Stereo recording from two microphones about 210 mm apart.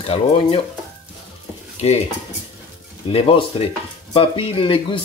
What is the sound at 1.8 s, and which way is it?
Speech, 30° left (ahead or behind).